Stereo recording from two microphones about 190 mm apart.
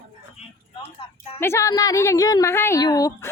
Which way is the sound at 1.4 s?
15° left (ahead or behind).